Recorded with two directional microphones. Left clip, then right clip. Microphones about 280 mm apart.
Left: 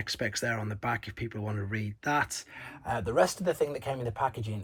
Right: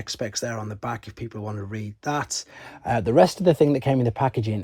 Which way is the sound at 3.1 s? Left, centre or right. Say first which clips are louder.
Right 9 dB; right.